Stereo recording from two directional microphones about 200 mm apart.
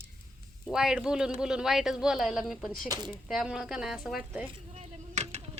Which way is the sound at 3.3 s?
5° right (ahead or behind).